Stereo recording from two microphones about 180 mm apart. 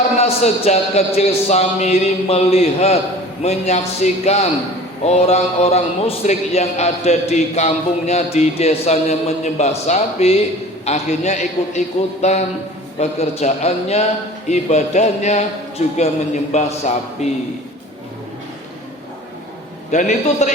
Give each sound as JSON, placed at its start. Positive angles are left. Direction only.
{"t": 0.2, "sound": "a man's voice", "side_deg": 35}
{"t": 19.9, "sound": "a man's voice", "side_deg": 40}